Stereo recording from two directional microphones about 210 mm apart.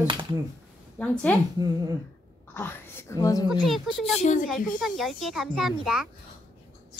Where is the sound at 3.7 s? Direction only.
Centre (ahead or behind).